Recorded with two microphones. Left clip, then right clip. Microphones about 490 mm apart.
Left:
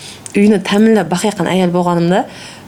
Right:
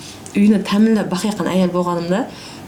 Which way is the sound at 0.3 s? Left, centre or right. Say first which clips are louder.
Left 5 dB; left.